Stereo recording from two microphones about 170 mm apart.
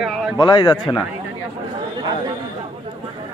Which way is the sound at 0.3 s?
25° left (ahead or behind).